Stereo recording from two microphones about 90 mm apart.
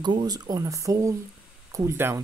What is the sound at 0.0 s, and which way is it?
Speech, 55° right (ahead or behind).